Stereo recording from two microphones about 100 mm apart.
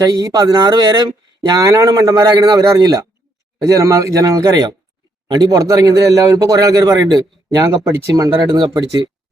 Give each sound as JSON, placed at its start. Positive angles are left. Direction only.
{"t": 0.0, "sound": "speech", "side_deg": -35}